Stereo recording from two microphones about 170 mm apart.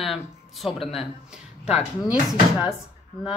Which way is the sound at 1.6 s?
40° left (ahead or behind).